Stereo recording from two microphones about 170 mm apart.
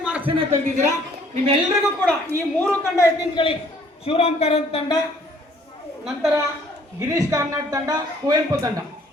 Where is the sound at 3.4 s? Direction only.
30° left (ahead or behind).